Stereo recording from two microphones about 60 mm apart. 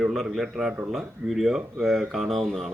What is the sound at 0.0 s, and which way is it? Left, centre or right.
A man's voice, centre.